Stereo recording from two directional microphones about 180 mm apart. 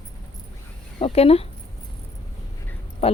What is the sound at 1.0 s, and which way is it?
Speech, 35° left (ahead or behind).